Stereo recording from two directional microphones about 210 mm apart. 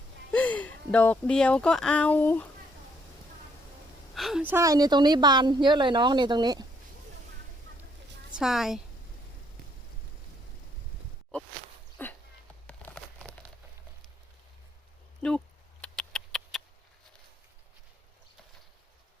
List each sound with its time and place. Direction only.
0.3 s speech: 5° left (ahead or behind)
4.1 s a woman's voice: centre (ahead or behind); by 6.7 s 20° right (ahead or behind)
8.3 s a woman's voice: centre (ahead or behind)
12.0 s dog: 10° left (ahead or behind)
12.6 s a sound: 5° left (ahead or behind)
15.2 s speech: 5° left (ahead or behind)
15.8 s a sound: 5° left (ahead or behind)